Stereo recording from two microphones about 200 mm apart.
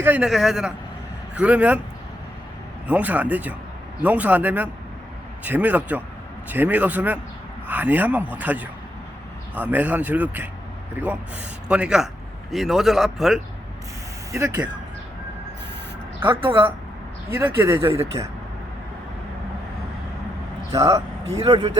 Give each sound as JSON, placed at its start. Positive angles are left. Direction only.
{"t": 0.0, "sound": "a man's voice", "side_deg": -5}
{"t": 2.8, "sound": "a man's voice", "side_deg": -10}
{"t": 11.7, "sound": "speech", "side_deg": -5}
{"t": 14.3, "sound": "a man's voice", "side_deg": -15}
{"t": 16.3, "sound": "speech", "side_deg": -25}
{"t": 17.3, "sound": "a man's voice", "side_deg": -10}
{"t": 20.7, "sound": "a man's voice", "side_deg": -15}